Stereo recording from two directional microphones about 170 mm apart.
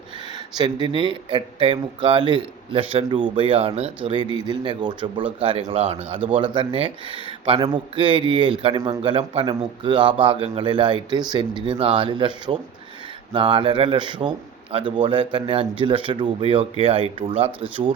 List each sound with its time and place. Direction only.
0.5 s a man's voice: 25° right (ahead or behind)